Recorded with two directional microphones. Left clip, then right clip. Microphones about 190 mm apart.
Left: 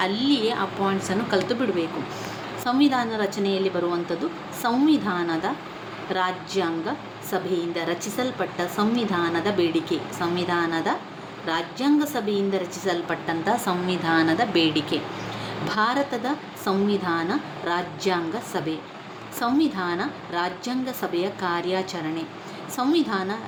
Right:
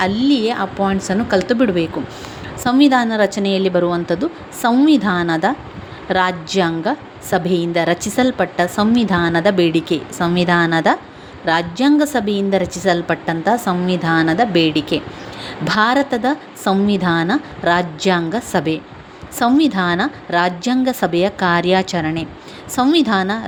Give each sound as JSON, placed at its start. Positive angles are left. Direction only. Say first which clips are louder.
{"t": 0.0, "sound": "a woman's voice", "louder": "right 6 dB", "side_deg": -30}